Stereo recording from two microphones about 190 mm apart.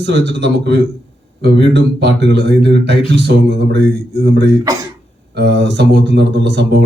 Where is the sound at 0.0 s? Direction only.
65° right (ahead or behind).